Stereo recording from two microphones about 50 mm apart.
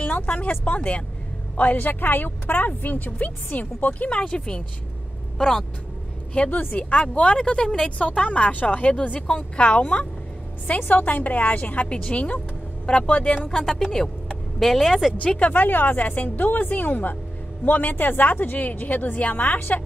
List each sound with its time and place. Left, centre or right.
0.0 s a woman's voice: left
1.6 s a woman's voice: left
6.5 s a woman's voice: left; by 13.7 s centre
14.6 s speech: centre
15.1 s a woman's voice: left